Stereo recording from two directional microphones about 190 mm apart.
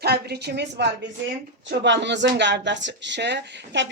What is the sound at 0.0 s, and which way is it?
A woman's voice, 55° right (ahead or behind).